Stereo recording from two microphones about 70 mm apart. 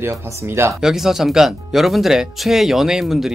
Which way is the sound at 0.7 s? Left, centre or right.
Centre.